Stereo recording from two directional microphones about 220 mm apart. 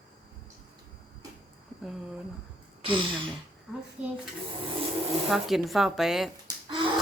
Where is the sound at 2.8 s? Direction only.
20° right (ahead or behind).